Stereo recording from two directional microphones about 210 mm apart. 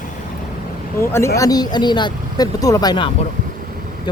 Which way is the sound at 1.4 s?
15° left (ahead or behind).